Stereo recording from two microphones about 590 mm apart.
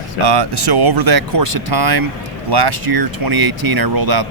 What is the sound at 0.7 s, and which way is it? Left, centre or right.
Speech, right.